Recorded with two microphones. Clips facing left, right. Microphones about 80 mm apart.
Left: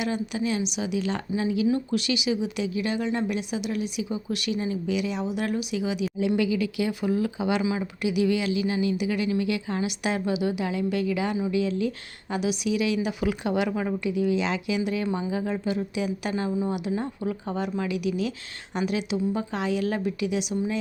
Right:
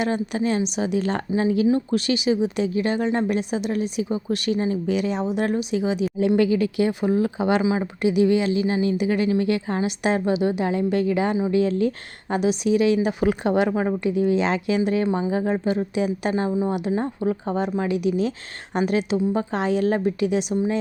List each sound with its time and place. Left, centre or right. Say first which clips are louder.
0.0 s a woman's voice: right 4 dB; right